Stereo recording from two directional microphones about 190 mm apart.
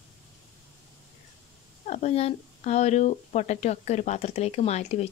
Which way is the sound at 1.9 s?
35° left (ahead or behind).